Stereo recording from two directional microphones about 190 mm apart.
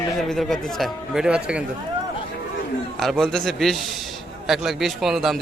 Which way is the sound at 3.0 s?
Centre (ahead or behind).